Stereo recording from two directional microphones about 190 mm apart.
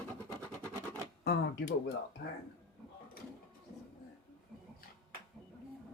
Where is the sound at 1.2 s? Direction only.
60° left (ahead or behind).